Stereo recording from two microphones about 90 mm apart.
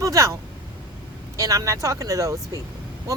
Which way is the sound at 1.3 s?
40° right (ahead or behind).